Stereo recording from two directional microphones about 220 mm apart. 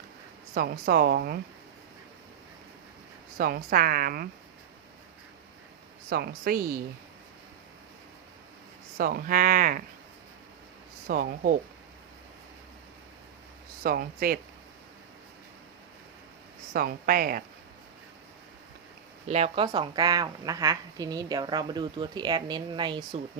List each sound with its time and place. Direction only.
0.5 s a woman's voice: 45° right (ahead or behind)
3.3 s a woman's voice: 40° right (ahead or behind)
6.1 s a woman's voice: 45° right (ahead or behind)
9.0 s speech: 40° right (ahead or behind)
11.1 s speech: 40° right (ahead or behind)
13.8 s speech: 40° right (ahead or behind)
16.7 s speech: 40° right (ahead or behind)
19.3 s a woman's voice: 25° right (ahead or behind)